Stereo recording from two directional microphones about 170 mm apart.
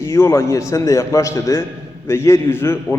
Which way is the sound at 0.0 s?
15° left (ahead or behind).